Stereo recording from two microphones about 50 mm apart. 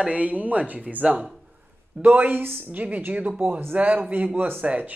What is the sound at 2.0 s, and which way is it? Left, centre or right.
Speech, right.